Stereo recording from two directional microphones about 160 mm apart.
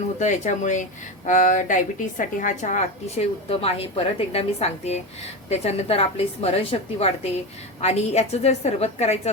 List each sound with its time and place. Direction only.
0.2 s a woman's voice: 50° left (ahead or behind)
3.6 s a woman's voice: 40° left (ahead or behind)